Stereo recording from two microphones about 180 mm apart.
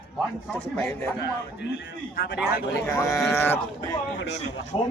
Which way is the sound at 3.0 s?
15° left (ahead or behind).